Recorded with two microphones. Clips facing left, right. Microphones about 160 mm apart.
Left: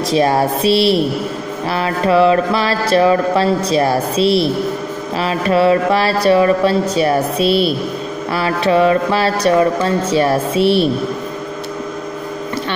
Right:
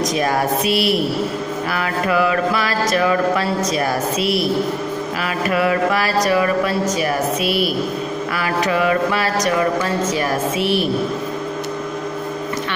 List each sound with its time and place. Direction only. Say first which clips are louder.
0.1 s speech: left 4 dB; 30° left (ahead or behind)